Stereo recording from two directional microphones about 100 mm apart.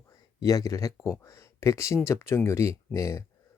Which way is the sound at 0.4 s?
35° left (ahead or behind).